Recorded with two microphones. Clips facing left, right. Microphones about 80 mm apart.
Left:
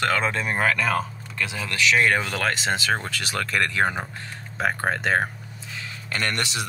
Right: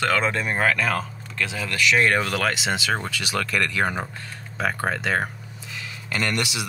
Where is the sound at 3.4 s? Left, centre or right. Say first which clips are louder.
Left 3 dB; left.